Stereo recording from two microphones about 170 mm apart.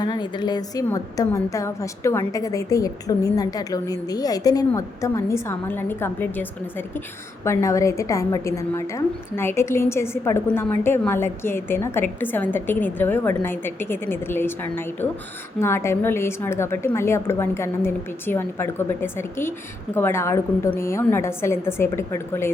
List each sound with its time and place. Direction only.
0.0 s a woman's voice: 25° left (ahead or behind)